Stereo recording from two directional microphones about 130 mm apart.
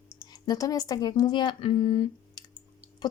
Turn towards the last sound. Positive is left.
turn(degrees=30)  # may be behind; listen again after turning